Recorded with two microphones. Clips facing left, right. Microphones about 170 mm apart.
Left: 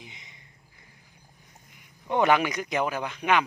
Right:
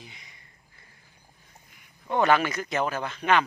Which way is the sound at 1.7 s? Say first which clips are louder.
Even; 20° left (ahead or behind).